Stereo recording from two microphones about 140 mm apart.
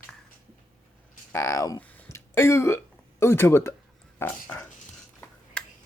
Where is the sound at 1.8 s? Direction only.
15° left (ahead or behind).